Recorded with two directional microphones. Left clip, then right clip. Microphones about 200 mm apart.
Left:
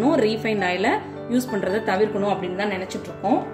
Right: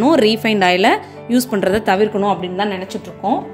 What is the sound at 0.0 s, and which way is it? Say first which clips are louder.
Speech: right 7 dB; 45° right (ahead or behind).